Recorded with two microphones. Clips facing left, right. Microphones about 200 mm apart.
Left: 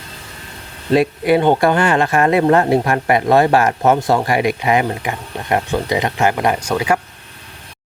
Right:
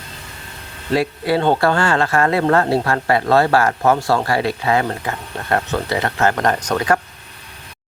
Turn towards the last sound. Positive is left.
turn(degrees=10)  # may be behind; listen again after turning